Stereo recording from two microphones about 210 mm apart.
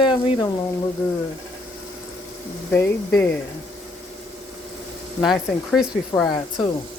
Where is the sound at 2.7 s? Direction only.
10° left (ahead or behind).